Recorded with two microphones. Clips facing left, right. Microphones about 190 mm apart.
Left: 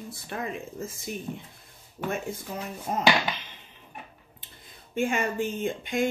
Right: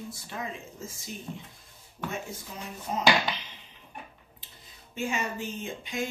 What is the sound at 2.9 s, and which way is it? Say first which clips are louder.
Speech: left 2 dB; 50° left (ahead or behind).